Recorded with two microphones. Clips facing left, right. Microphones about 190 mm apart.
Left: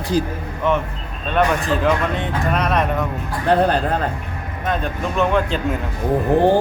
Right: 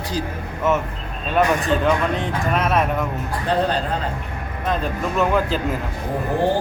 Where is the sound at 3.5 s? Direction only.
60° left (ahead or behind).